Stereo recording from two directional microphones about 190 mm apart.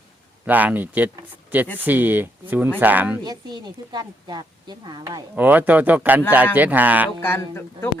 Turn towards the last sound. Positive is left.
turn(degrees=15)  # may be behind; listen again after turning